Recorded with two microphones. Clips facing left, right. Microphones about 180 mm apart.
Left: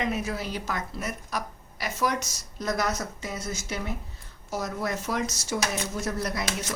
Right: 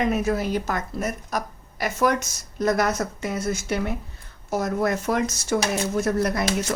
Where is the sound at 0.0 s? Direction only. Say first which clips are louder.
Right 7 dB; 50° right (ahead or behind).